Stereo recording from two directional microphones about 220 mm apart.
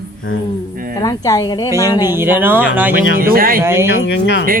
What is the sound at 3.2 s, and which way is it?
Speech, 40° right (ahead or behind).